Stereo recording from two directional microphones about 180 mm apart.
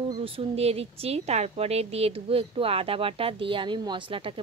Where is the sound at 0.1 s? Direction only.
30° right (ahead or behind).